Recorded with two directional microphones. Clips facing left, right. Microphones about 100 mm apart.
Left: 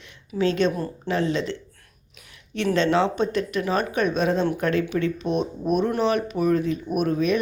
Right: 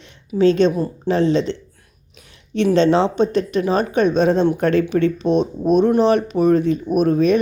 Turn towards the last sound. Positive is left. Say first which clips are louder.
# right 7 dB
turn(degrees=-35)  # may be behind; listen again after turning